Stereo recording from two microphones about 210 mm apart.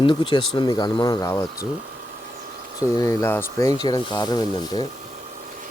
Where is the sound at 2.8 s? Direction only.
15° left (ahead or behind).